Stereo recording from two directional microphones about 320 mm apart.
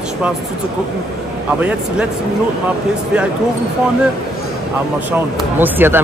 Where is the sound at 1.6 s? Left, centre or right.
Centre.